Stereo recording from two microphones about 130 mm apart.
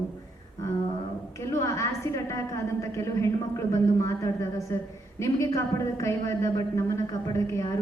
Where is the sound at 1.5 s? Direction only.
20° left (ahead or behind).